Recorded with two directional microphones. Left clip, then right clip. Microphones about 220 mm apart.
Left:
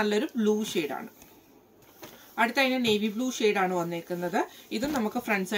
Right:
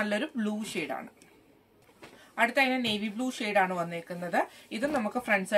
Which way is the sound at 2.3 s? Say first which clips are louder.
Left 1 dB; 15° right (ahead or behind).